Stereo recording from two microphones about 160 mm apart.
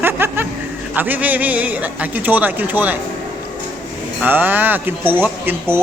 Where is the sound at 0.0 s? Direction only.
15° right (ahead or behind).